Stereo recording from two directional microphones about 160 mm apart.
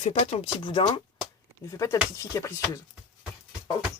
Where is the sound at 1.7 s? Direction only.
20° left (ahead or behind).